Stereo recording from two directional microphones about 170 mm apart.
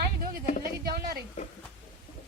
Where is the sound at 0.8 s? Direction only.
65° right (ahead or behind).